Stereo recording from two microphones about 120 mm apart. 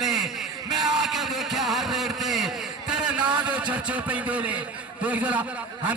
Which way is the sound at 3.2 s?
40° right (ahead or behind).